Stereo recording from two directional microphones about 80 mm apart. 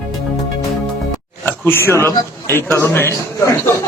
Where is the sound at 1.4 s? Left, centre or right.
Left.